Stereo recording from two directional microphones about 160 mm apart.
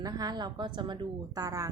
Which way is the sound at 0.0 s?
25° right (ahead or behind).